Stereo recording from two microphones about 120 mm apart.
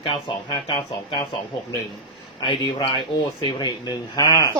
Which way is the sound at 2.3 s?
45° left (ahead or behind).